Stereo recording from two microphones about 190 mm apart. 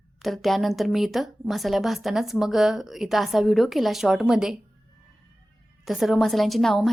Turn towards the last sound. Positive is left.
turn(degrees=0)  # may be behind; listen again after turning